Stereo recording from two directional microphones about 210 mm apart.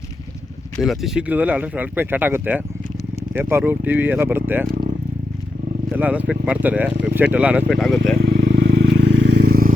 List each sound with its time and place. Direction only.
0.8 s speech: centre (ahead or behind)
5.9 s speech: 5° right (ahead or behind)
6.9 s speech: 55° right (ahead or behind)
7.2 s speech: 5° right (ahead or behind)
8.2 s vehicle: 55° right (ahead or behind)